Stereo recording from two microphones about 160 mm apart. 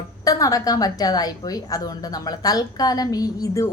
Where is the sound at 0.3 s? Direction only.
20° left (ahead or behind).